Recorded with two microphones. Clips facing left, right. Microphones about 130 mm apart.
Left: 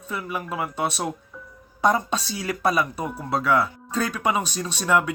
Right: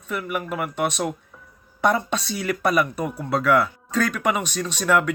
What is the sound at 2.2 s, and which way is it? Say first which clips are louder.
Speech: right 3 dB; 30° left (ahead or behind).